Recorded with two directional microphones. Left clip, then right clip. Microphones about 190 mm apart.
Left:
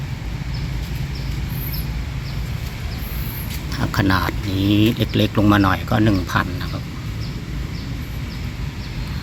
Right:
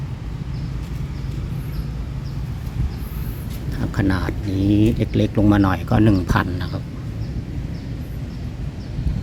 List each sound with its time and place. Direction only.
3.7 s speech: 5° right (ahead or behind); by 6.7 s 25° right (ahead or behind)